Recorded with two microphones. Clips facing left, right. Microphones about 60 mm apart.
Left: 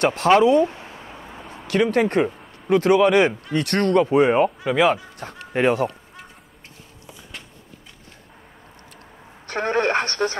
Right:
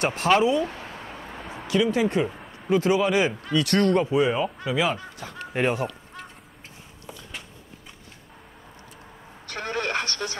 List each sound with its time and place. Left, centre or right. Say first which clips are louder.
0.0 s speech: left 5 dB; left
0.7 s a sound: right 1 dB; centre
1.0 s vehicle: right 1 dB; centre
1.7 s speech: left 3 dB; left
2.3 s a sound: right 2 dB; centre
2.7 s speech: left 5 dB; left
9.5 s radio: left 7 dB; left